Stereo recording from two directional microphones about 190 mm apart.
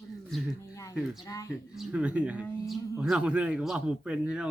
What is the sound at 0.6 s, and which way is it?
Speech, 15° left (ahead or behind).